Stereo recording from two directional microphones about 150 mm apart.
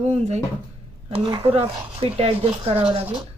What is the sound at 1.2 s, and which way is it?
Speech, 35° right (ahead or behind).